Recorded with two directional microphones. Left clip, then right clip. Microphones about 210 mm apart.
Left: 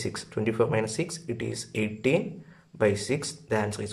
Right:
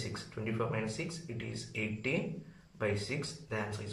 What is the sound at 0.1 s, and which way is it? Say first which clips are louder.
Speech: left 10 dB; 40° left (ahead or behind).